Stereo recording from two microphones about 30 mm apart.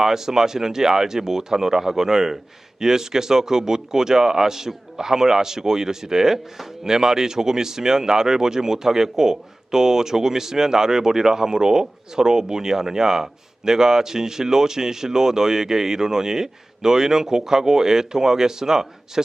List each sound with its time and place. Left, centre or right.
0.0 s speech: centre